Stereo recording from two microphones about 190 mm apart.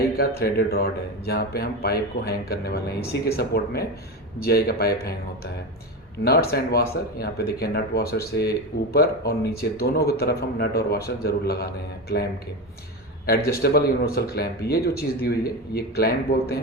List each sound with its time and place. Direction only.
0.2 s speech: 50° left (ahead or behind)
6.5 s speech: 55° left (ahead or behind)
13.6 s speech: 55° left (ahead or behind)